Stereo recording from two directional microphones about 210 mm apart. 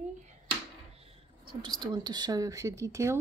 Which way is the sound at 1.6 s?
20° right (ahead or behind).